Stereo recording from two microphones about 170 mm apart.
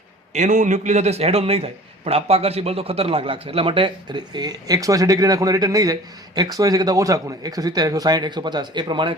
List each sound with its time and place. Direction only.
0.3 s a man's voice: 45° right (ahead or behind); by 9.1 s 30° right (ahead or behind)